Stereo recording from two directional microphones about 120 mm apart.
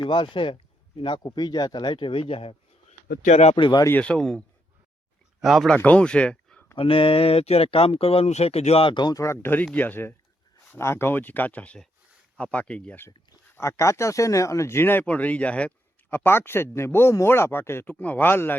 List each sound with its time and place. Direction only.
0.0 s speech: 40° left (ahead or behind)
3.2 s speech: 65° left (ahead or behind)
3.5 s speech: 40° left (ahead or behind)
3.8 s speech: 10° left (ahead or behind)
6.7 s speech: 50° left (ahead or behind)
9.2 s speech: 20° left (ahead or behind)
13.6 s speech: 25° left (ahead or behind)